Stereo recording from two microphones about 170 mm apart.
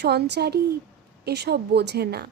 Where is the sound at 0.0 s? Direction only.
70° right (ahead or behind).